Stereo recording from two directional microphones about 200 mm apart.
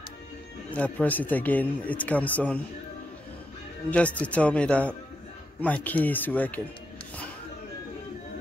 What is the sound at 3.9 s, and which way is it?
Speech, 5° left (ahead or behind).